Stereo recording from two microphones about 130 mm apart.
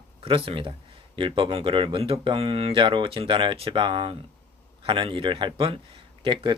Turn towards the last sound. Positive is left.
turn(degrees=-40)  # may be behind; listen again after turning